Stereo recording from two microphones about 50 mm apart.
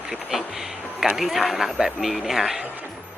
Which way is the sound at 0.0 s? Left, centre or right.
Centre.